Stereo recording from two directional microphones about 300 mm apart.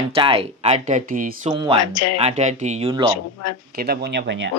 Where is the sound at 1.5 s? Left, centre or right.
Centre.